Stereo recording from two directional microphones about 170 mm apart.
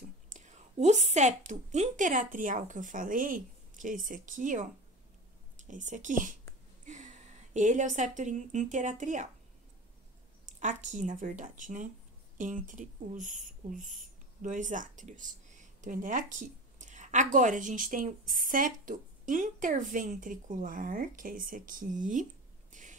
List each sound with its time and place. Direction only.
0.3 s a woman's voice: 45° right (ahead or behind)
10.4 s speech: 45° right (ahead or behind)
22.7 s a sound: 50° right (ahead or behind)